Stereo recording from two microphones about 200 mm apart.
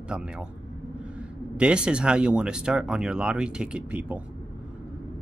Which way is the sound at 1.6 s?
5° right (ahead or behind).